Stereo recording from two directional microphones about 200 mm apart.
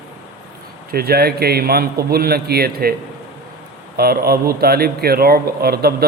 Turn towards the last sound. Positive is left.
turn(degrees=-50)  # may be behind; listen again after turning